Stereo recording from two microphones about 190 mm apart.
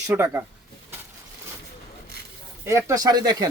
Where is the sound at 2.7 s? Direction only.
15° right (ahead or behind).